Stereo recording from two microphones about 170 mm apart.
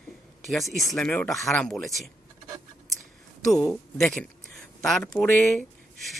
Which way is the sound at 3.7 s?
5° left (ahead or behind).